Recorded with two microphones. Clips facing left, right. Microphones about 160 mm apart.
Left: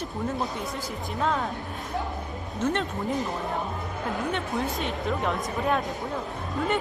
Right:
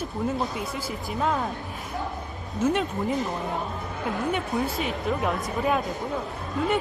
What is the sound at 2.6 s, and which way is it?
A woman's voice, 5° right (ahead or behind).